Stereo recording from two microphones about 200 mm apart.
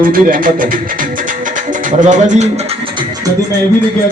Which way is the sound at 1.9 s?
40° right (ahead or behind).